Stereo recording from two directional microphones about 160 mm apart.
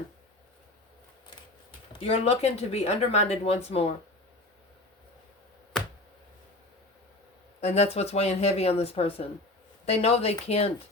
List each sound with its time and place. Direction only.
1.9 s speech: 40° left (ahead or behind)
7.6 s speech: 40° left (ahead or behind)